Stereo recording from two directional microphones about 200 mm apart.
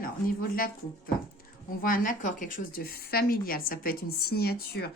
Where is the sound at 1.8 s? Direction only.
45° left (ahead or behind).